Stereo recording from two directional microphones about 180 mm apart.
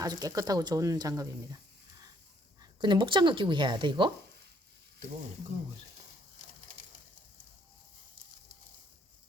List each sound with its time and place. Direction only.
0.0 s speech: 20° right (ahead or behind)
2.6 s speech: 25° right (ahead or behind)